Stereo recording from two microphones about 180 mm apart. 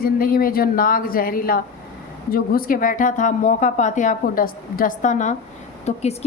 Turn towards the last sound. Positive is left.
turn(degrees=35)  # may be behind; listen again after turning